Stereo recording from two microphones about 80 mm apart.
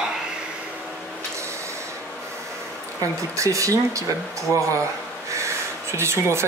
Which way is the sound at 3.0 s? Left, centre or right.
Right.